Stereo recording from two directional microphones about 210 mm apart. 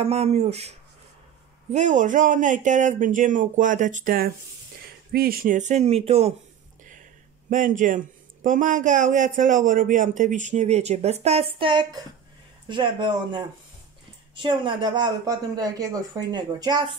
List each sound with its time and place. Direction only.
0.0 s speech: 30° right (ahead or behind)
7.4 s a woman's voice: 40° right (ahead or behind); by 16.8 s 20° right (ahead or behind)